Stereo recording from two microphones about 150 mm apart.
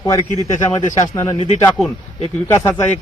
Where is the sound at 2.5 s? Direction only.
15° left (ahead or behind).